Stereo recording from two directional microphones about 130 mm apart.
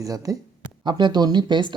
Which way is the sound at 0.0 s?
25° right (ahead or behind).